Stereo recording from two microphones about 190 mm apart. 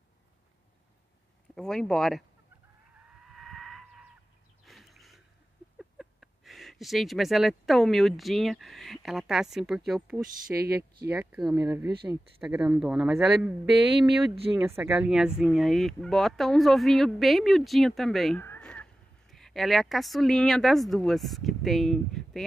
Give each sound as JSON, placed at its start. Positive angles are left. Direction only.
{"t": 1.5, "sound": "speech", "side_deg": 5}
{"t": 3.3, "sound": "chicken", "side_deg": 0}
{"t": 4.6, "sound": "a sound", "side_deg": 0}
{"t": 5.8, "sound": "speech", "side_deg": 0}
{"t": 11.5, "sound": "speech", "side_deg": -20}
{"t": 12.4, "sound": "speech", "side_deg": -5}
{"t": 14.3, "sound": "speech", "side_deg": -30}
{"t": 14.8, "sound": "speech", "side_deg": -5}